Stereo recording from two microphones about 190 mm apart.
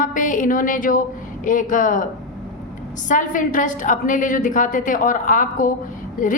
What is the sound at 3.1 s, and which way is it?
A woman's voice, 45° left (ahead or behind).